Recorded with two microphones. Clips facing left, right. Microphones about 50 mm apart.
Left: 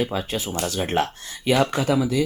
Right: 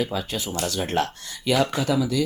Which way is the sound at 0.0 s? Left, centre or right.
Left.